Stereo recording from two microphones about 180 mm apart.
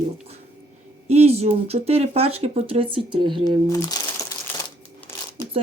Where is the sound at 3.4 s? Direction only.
20° left (ahead or behind).